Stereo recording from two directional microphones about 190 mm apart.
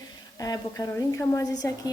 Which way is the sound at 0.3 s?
20° left (ahead or behind).